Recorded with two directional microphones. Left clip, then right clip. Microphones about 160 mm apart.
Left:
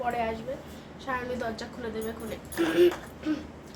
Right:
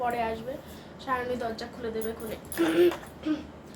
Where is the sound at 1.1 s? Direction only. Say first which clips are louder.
Right 2 dB; 5° right (ahead or behind).